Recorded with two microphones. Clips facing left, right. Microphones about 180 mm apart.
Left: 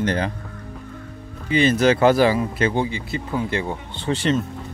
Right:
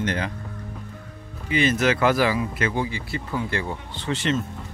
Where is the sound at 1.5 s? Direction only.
30° left (ahead or behind).